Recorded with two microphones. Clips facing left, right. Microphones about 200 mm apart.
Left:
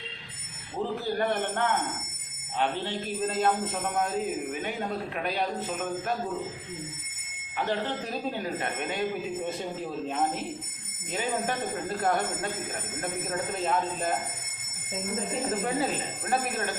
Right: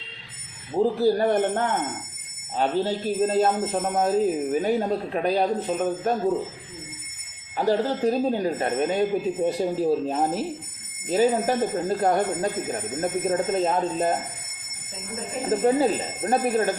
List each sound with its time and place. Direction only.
0.8 s speech: 35° right (ahead or behind)
7.5 s speech: 35° right (ahead or behind)
15.6 s speech: 30° right (ahead or behind)